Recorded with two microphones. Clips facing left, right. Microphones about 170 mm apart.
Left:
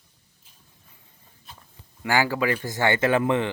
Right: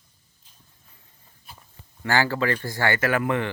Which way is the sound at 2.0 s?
15° left (ahead or behind).